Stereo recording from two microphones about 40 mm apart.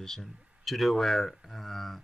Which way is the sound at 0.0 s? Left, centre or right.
Centre.